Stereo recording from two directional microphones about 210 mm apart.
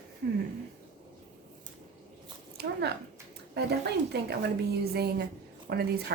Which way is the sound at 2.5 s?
50° right (ahead or behind).